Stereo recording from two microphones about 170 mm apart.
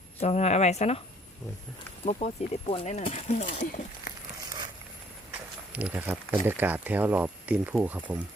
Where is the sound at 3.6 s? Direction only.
50° left (ahead or behind).